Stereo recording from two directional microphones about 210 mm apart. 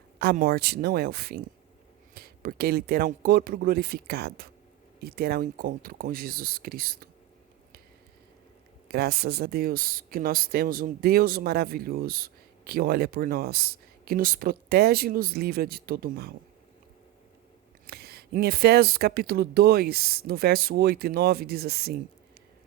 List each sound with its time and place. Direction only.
0.2 s speech: 45° right (ahead or behind)
8.9 s speech: 45° right (ahead or behind)
17.8 s speech: 50° right (ahead or behind)